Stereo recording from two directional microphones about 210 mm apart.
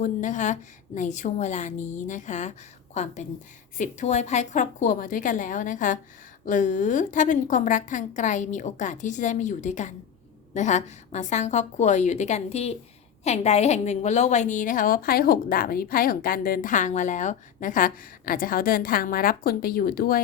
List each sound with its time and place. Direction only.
0.0 s a woman's voice: 35° left (ahead or behind)